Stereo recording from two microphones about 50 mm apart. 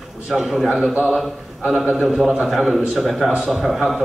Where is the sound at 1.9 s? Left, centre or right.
Centre.